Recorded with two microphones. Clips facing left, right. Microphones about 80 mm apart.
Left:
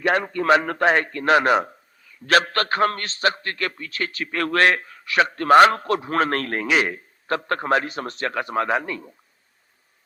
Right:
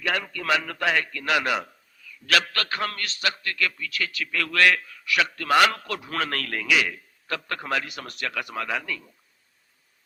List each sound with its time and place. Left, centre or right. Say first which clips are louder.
0.0 s a man's voice: left 7 dB; left